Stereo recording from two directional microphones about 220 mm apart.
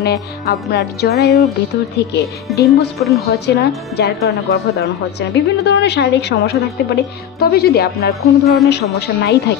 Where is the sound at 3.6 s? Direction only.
45° left (ahead or behind).